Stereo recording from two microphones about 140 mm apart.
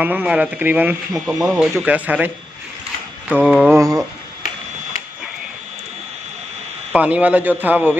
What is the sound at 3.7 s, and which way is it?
Speech, 25° right (ahead or behind).